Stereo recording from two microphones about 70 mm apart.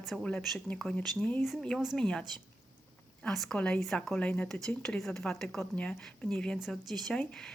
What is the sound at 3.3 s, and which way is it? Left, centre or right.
Speech, centre.